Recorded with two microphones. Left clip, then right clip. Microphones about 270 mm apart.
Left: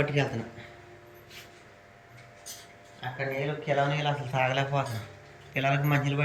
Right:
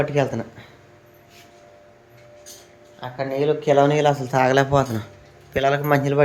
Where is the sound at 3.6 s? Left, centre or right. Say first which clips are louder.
Right 11 dB; right.